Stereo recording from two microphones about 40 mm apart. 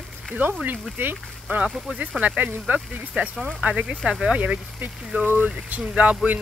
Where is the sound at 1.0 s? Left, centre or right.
Right.